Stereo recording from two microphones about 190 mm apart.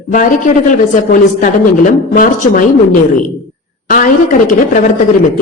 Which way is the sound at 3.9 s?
45° left (ahead or behind).